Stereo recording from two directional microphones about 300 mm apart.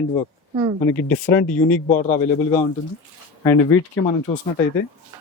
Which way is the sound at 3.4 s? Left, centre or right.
Centre.